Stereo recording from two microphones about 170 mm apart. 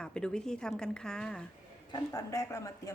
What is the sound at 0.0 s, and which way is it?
Speech, 5° left (ahead or behind).